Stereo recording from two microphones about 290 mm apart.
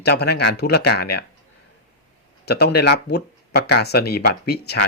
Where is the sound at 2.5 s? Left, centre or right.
Left.